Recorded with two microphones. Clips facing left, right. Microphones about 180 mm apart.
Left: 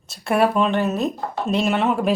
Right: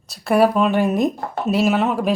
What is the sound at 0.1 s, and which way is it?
Speech, centre (ahead or behind).